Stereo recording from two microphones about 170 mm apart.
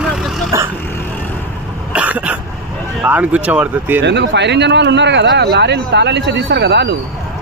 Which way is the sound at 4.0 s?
90° right.